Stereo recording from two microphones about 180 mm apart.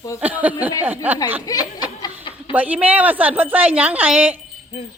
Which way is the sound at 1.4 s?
20° left (ahead or behind).